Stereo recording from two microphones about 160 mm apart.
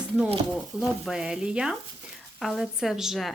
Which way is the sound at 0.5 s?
5° right (ahead or behind).